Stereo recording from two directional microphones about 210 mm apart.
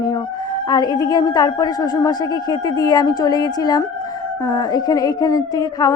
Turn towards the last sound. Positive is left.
turn(degrees=15)  # may be behind; listen again after turning